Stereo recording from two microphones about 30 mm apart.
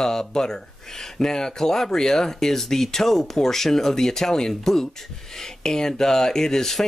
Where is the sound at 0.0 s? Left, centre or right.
Left.